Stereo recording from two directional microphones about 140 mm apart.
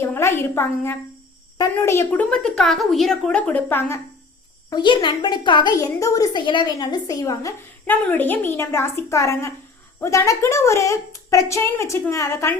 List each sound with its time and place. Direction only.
0.0 s a woman's voice: 15° left (ahead or behind)
2.3 s speech: 5° left (ahead or behind)
4.7 s a child's voice: 35° left (ahead or behind)
5.7 s a woman's voice: 25° left (ahead or behind)
7.9 s a woman's voice: 15° left (ahead or behind)